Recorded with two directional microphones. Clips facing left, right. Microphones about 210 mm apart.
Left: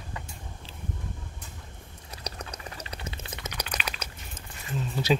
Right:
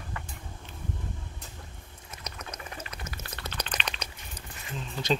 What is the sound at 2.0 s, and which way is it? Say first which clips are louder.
Chewing: left 3 dB; 35° left (ahead or behind).